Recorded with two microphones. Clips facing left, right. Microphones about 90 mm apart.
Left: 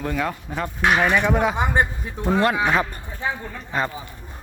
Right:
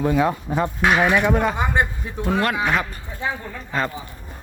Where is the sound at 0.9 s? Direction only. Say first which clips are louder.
Right 1 dB; 10° right (ahead or behind).